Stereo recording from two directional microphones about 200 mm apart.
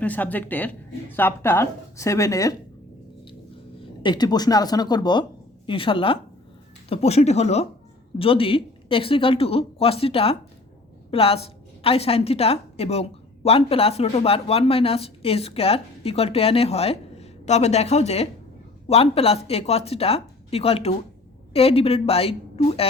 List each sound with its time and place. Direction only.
0.0 s speech: 10° left (ahead or behind)
4.0 s a woman's voice: 20° left (ahead or behind)